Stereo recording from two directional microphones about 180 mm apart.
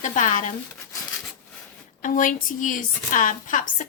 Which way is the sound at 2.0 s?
45° left (ahead or behind).